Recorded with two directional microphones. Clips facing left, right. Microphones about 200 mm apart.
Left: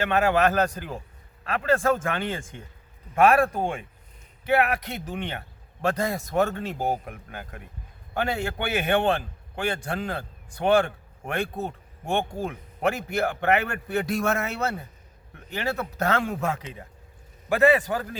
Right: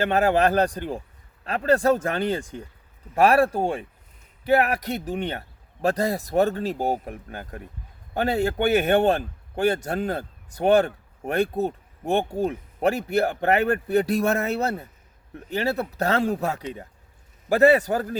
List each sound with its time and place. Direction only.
0.0 s a man's voice: 35° right (ahead or behind)